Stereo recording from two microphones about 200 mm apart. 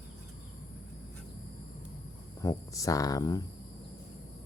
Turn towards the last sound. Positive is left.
turn(degrees=20)  # may be behind; listen again after turning